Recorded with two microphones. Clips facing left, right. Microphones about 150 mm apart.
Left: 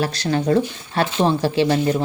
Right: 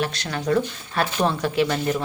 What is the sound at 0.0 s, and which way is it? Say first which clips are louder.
Speech: left 5 dB; 35° left (ahead or behind).